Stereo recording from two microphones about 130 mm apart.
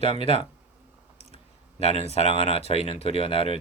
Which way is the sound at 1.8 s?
55° left (ahead or behind).